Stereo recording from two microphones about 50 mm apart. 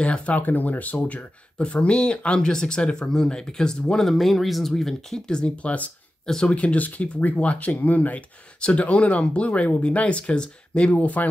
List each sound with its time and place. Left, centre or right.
0.0 s speech: left
0.4 s speech: left; by 4.1 s centre
4.1 s speech: centre
5.4 s speech: left
6.2 s speech: centre
6.5 s speech: left